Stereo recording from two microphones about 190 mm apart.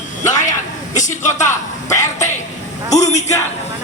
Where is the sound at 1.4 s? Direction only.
15° left (ahead or behind).